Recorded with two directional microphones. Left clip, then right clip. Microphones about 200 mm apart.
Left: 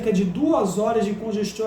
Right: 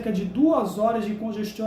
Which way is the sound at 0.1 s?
15° right (ahead or behind).